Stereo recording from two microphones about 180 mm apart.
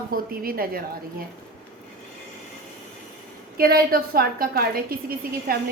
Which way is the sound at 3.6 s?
55° right (ahead or behind).